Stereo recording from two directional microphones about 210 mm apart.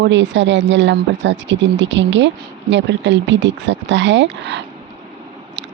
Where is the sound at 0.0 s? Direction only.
60° right (ahead or behind).